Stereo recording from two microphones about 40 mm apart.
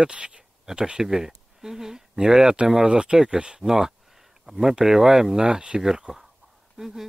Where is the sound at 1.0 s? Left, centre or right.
Centre.